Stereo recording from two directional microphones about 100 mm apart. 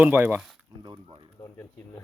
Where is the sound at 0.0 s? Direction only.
15° right (ahead or behind).